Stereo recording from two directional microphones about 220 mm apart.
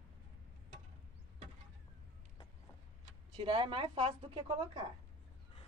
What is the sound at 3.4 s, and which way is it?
Speech, 20° right (ahead or behind).